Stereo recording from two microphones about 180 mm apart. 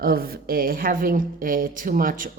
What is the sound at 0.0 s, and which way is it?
A woman's voice, 55° right (ahead or behind).